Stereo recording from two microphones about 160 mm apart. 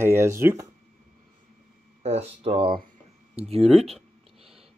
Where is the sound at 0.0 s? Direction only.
15° right (ahead or behind).